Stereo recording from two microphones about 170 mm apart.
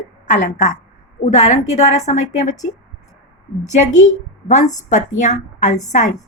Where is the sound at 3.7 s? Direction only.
45° left (ahead or behind).